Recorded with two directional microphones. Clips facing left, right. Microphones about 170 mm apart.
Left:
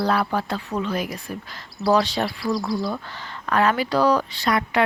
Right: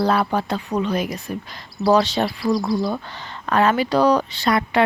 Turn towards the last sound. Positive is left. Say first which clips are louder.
# right 3 dB
turn(degrees=-30)  # may be behind; listen again after turning